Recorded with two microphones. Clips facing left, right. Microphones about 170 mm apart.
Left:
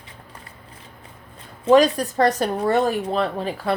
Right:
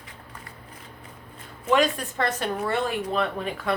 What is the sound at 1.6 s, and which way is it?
Speech, 35° left (ahead or behind).